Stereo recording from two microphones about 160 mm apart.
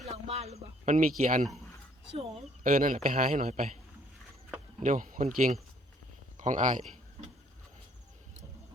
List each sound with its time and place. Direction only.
0.0 s speech: 40° right (ahead or behind)
1.2 s a man's voice: 55° right (ahead or behind)
2.6 s a man's voice: 55° right (ahead or behind)
4.8 s a man's voice: 55° right (ahead or behind)